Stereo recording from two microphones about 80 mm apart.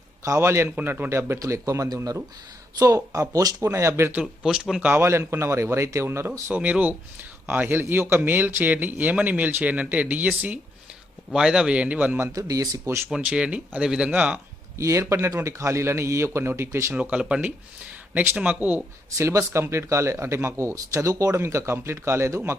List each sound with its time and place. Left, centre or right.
0.2 s speech: right
4.4 s speech: centre
4.8 s a man's voice: right
5.0 s speech: right
6.5 s a man's voice: centre
11.3 s speech: centre
12.3 s speech: right
13.1 s a man's voice: centre
14.8 s speech: right
16.9 s a man's voice: centre
19.1 s speech: right